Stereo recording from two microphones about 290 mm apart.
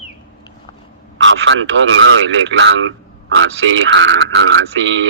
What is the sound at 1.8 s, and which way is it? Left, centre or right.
Speech, right.